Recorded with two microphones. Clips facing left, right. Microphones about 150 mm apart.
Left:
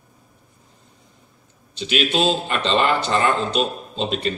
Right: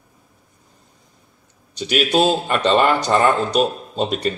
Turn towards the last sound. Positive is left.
turn(degrees=-45)  # may be behind; listen again after turning